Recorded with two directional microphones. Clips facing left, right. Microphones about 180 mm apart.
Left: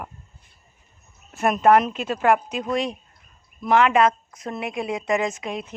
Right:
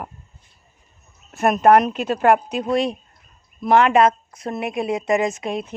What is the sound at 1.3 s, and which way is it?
A woman's voice, 40° right (ahead or behind).